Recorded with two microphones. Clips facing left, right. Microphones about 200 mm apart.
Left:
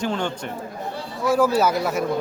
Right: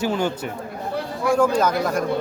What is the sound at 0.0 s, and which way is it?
Speech, 5° right (ahead or behind).